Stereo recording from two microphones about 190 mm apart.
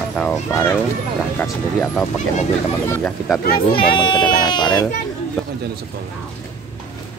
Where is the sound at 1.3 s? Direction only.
10° left (ahead or behind).